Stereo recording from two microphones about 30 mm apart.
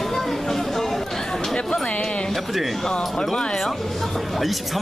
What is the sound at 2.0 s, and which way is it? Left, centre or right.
Music, left.